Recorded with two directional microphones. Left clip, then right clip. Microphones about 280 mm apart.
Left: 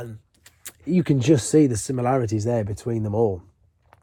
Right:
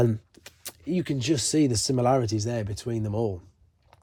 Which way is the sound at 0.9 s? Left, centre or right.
Centre.